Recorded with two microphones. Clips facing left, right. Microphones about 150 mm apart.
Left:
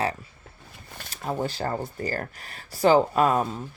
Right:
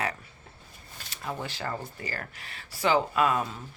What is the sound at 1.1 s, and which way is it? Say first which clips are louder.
Speech: left 7 dB; 40° left (ahead or behind).